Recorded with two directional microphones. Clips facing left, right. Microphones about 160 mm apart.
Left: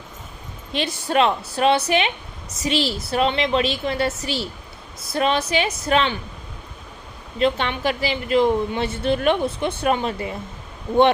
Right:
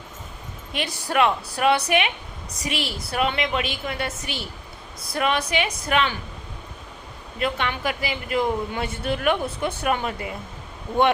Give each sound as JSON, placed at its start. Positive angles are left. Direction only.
{"t": 0.7, "sound": "speech", "side_deg": 25}
{"t": 7.3, "sound": "speech", "side_deg": 25}